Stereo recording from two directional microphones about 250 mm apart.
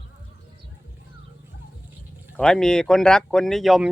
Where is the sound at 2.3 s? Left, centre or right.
Centre.